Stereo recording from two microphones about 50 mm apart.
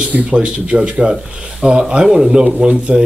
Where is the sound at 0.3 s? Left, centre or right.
Right.